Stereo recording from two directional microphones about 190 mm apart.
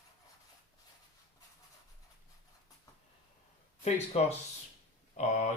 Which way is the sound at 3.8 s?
35° left (ahead or behind).